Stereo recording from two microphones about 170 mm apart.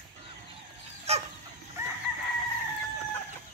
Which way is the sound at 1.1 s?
40° right (ahead or behind).